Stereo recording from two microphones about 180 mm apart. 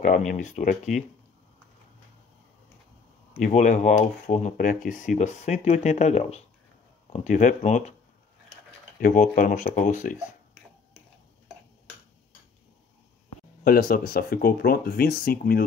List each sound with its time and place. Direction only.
0.0 s speech: 45° left (ahead or behind)
3.3 s speech: 45° left (ahead or behind)
9.0 s speech: 50° left (ahead or behind)
13.7 s speech: 55° left (ahead or behind)